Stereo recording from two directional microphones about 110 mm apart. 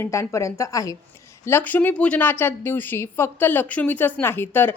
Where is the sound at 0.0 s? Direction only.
25° left (ahead or behind).